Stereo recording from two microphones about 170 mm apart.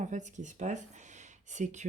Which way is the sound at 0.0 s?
45° right (ahead or behind).